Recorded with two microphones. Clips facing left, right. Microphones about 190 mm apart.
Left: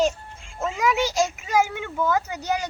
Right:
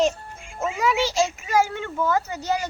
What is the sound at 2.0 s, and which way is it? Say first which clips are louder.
Speech: even; centre (ahead or behind).